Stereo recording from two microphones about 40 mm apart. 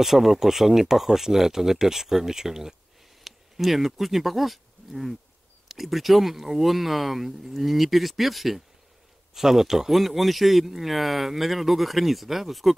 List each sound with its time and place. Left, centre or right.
0.0 s speech: centre